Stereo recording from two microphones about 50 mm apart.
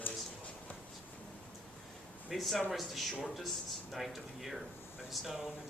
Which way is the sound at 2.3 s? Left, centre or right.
Centre.